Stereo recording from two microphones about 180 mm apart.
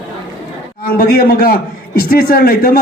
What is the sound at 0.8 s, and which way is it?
A man's voice, 60° left (ahead or behind).